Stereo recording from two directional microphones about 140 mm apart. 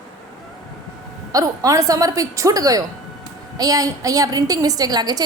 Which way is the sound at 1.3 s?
25° right (ahead or behind).